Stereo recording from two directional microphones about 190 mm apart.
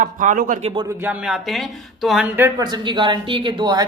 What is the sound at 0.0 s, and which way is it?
Speech, 40° right (ahead or behind).